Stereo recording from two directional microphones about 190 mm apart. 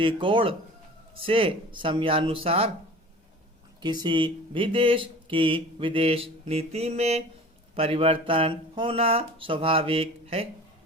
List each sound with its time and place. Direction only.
0.0 s speech: 25° right (ahead or behind)
3.8 s speech: 25° right (ahead or behind)